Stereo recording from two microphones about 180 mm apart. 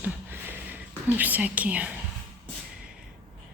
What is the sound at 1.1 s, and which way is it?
Speech, 10° right (ahead or behind).